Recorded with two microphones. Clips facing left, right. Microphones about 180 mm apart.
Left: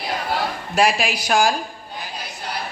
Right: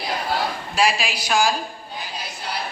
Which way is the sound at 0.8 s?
55° left (ahead or behind).